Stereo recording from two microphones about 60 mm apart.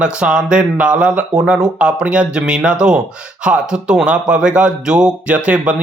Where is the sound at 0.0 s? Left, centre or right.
Centre.